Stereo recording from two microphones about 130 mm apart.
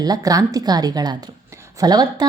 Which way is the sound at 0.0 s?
30° right (ahead or behind).